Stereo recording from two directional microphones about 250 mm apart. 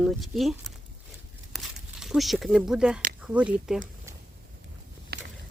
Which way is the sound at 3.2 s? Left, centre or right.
Centre.